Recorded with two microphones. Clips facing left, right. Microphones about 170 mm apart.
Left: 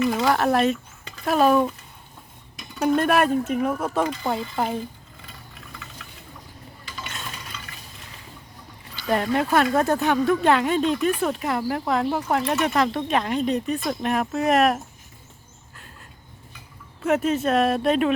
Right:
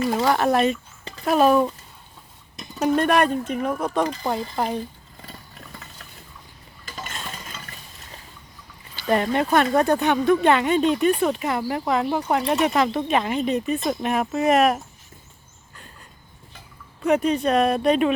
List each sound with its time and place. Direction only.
0.3 s speech: centre (ahead or behind)
2.7 s speech: centre (ahead or behind)
5.2 s vehicle: 40° right (ahead or behind)
6.8 s dishes: 45° right (ahead or behind)
7.7 s stir: 40° right (ahead or behind)
9.0 s speech: centre (ahead or behind)
12.4 s speech: 15° right (ahead or behind)
12.6 s speech: centre (ahead or behind)
17.0 s speech: centre (ahead or behind)